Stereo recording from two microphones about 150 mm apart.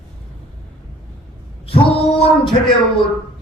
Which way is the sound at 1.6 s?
40° left (ahead or behind).